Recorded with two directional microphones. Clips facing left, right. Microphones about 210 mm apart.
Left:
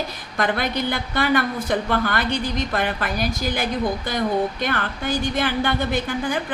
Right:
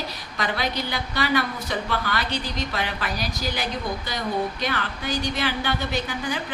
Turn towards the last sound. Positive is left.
turn(degrees=50)  # may be behind; listen again after turning